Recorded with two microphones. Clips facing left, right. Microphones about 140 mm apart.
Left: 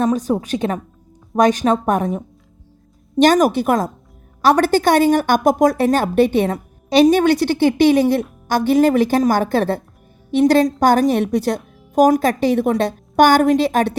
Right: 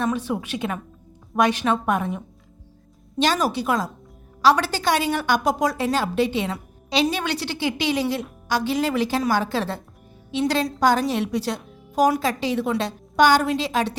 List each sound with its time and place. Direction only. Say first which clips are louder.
0.0 s a woman's voice: left 7 dB; 40° left (ahead or behind)